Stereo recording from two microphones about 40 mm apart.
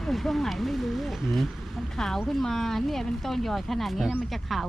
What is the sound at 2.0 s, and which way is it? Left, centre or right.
Speech, centre.